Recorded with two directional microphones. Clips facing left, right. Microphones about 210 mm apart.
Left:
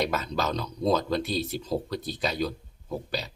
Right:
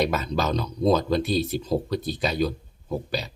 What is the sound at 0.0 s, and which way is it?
Speech, 10° right (ahead or behind).